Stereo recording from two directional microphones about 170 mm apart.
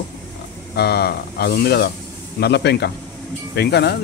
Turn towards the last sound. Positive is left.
turn(degrees=75)  # may be behind; listen again after turning